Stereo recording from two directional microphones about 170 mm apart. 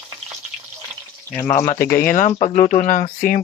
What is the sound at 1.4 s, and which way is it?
Speech, 15° left (ahead or behind).